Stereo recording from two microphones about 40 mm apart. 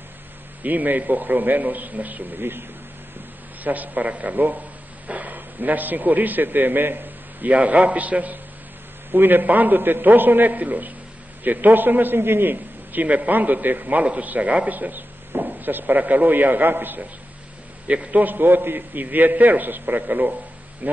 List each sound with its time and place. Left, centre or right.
0.7 s a man's voice: right
3.6 s a man's voice: right
7.4 s a man's voice: right
9.1 s a man's voice: right
12.2 s a man's voice: right
13.0 s a man's voice: right
14.4 s speech: right
14.7 s a man's voice: right
17.8 s a man's voice: right
18.2 s a man's voice: right